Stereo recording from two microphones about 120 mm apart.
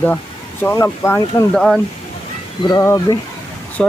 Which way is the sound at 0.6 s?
20° left (ahead or behind).